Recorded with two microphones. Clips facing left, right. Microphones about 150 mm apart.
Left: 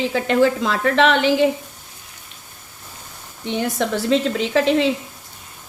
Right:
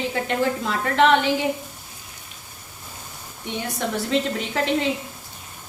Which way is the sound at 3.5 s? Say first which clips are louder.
Left 6 dB; 90° left.